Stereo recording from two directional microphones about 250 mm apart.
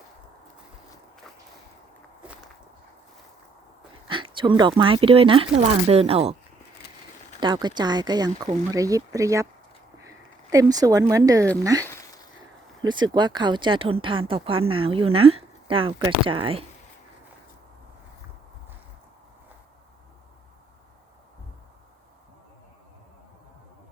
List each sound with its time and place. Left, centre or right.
4.1 s speech: centre
7.3 s speech: centre
10.5 s speech: centre
11.9 s a sound: centre
12.8 s speech: centre